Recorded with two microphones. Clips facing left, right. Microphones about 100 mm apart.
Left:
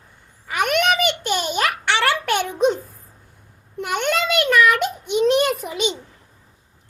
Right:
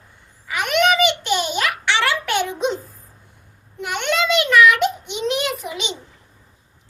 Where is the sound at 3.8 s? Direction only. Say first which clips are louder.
Even; 45° left (ahead or behind).